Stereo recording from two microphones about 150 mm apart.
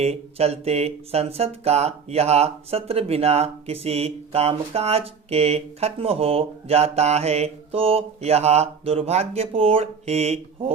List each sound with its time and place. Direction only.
0.0 s speech: 45° right (ahead or behind)